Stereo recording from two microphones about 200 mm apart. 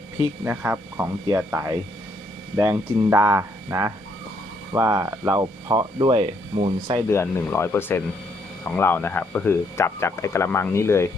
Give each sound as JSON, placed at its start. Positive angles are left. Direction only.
{"t": 0.4, "sound": "speech", "side_deg": -10}
{"t": 7.1, "sound": "speech", "side_deg": 10}